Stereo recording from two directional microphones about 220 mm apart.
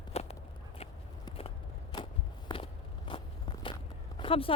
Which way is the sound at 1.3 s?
25° left (ahead or behind).